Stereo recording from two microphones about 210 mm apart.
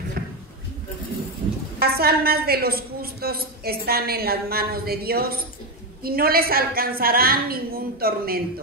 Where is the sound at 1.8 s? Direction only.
45° right (ahead or behind).